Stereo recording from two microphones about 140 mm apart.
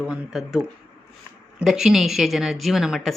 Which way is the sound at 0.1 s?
Centre (ahead or behind).